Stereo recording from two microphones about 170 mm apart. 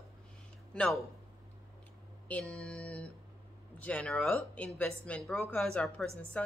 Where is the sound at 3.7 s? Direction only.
5° left (ahead or behind).